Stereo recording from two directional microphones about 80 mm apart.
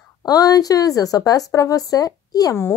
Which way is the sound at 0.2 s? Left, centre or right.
Left.